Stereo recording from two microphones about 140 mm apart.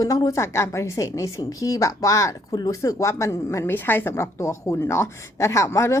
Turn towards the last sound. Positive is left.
turn(degrees=20)  # may be behind; listen again after turning